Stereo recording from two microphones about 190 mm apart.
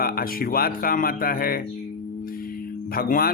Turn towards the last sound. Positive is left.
turn(degrees=50)  # may be behind; listen again after turning